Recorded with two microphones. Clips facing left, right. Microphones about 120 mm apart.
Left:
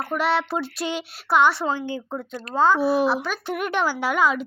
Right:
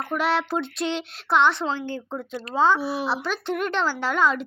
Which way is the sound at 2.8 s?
45° left (ahead or behind).